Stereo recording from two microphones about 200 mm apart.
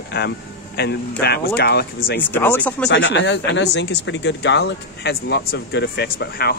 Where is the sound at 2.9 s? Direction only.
60° left (ahead or behind).